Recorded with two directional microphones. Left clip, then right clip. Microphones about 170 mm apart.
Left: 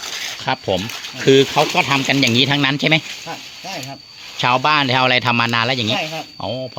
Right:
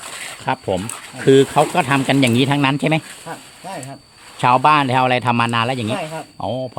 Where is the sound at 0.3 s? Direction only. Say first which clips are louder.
Even; centre (ahead or behind).